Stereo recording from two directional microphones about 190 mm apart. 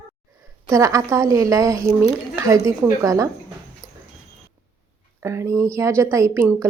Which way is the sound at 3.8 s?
15° right (ahead or behind).